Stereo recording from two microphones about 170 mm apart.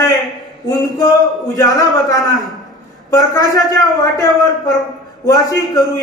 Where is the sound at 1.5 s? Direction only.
20° left (ahead or behind).